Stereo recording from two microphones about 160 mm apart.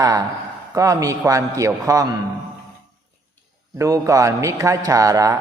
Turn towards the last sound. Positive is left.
turn(degrees=-20)  # may be behind; listen again after turning